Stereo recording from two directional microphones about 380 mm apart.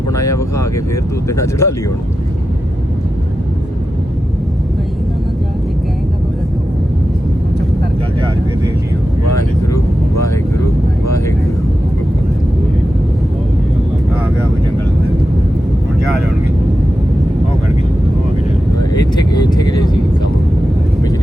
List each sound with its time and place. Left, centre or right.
0.1 s speech: centre
18.9 s vehicle: centre